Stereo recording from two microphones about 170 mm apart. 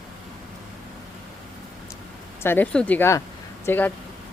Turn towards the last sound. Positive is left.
turn(degrees=10)  # may be behind; listen again after turning